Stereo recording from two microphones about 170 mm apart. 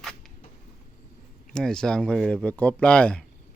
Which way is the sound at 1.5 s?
5° left (ahead or behind).